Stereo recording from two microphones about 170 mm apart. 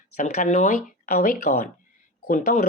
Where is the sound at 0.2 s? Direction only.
45° left (ahead or behind).